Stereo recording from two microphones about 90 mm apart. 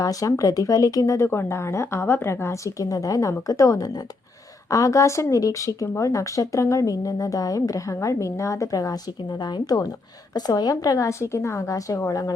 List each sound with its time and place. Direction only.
0.0 s speech: 40° left (ahead or behind)